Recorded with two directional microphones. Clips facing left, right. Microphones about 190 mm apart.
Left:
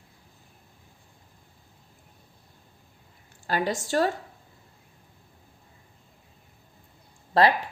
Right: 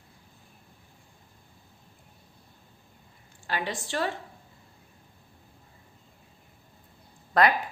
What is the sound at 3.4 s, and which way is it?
Speech, 40° left (ahead or behind).